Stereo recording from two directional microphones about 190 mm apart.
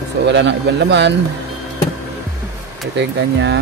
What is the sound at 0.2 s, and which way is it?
Speech, 70° right (ahead or behind).